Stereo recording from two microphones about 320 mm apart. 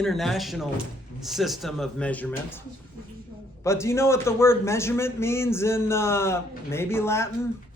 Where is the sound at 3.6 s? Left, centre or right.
Centre.